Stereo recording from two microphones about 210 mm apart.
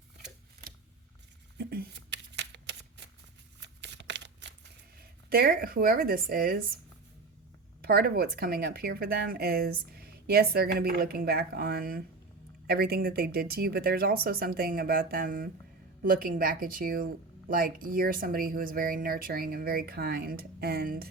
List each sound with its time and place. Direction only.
1.5 s shuffling cards: 50° right (ahead or behind)
3.6 s a sound: 55° right (ahead or behind)
7.8 s speech: 45° right (ahead or behind)